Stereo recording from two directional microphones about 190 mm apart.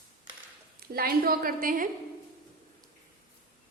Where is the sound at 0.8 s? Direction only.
50° right (ahead or behind).